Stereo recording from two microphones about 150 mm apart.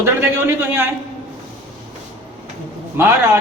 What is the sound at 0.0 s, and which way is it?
Speech, 15° right (ahead or behind).